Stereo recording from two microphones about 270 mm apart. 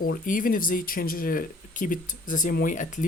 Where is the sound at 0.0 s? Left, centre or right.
Left.